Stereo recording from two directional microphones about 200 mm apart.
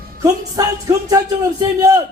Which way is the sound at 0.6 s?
20° right (ahead or behind).